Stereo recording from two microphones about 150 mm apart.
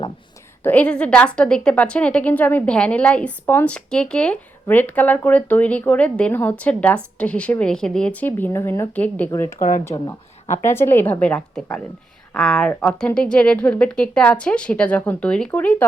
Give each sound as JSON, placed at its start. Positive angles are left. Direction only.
{"t": 0.6, "sound": "a woman's voice", "side_deg": 10}
{"t": 9.6, "sound": "speech", "side_deg": 65}
{"t": 9.8, "sound": "a woman's voice", "side_deg": 20}